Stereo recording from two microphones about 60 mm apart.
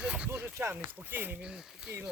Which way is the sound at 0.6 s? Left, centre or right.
Right.